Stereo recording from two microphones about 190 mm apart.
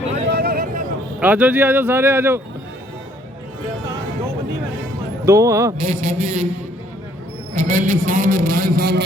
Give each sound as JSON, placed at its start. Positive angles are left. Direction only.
{"t": 0.3, "sound": "a sound", "side_deg": -55}
{"t": 1.2, "sound": "speech", "side_deg": -10}
{"t": 5.2, "sound": "speech", "side_deg": -15}
{"t": 5.7, "sound": "a man's voice", "side_deg": -35}
{"t": 7.5, "sound": "a man's voice", "side_deg": -40}